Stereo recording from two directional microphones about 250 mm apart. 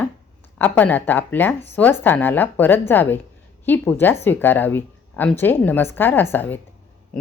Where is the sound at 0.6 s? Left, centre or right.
Centre.